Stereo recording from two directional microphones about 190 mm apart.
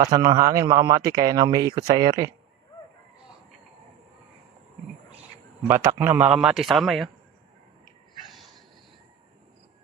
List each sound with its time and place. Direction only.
0.0 s speech: 20° right (ahead or behind)
5.6 s a man's voice: 15° right (ahead or behind)
8.3 s a sound: centre (ahead or behind)